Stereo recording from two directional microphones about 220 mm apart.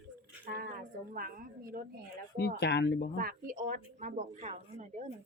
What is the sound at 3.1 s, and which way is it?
A woman's voice, 40° right (ahead or behind).